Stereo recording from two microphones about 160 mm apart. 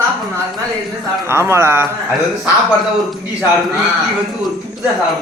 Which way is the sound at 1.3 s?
15° right (ahead or behind).